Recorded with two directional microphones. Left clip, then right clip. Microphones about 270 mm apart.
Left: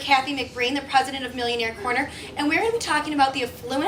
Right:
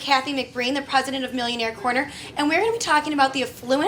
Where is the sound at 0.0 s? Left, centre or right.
Right.